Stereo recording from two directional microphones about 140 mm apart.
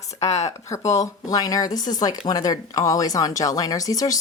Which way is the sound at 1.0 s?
25° left (ahead or behind).